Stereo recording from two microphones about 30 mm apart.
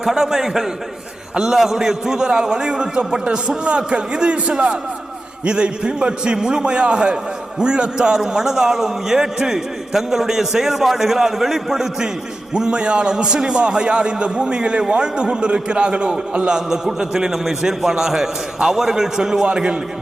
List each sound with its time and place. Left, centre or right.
0.0 s a man's voice: centre
12.5 s a man's voice: right
16.6 s a man's voice: centre